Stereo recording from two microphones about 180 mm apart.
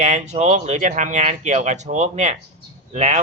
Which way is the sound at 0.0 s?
40° right (ahead or behind).